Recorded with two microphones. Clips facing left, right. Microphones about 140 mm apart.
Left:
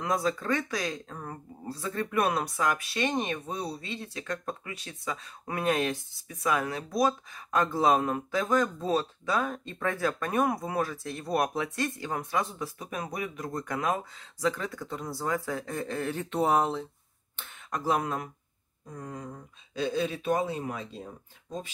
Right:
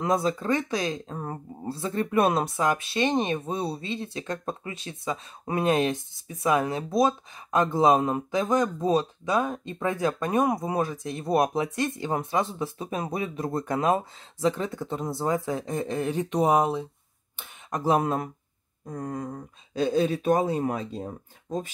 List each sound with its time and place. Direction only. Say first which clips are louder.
0.0 s speech: right 4 dB; 25° right (ahead or behind)
18.9 s speech: right 7 dB; 45° right (ahead or behind)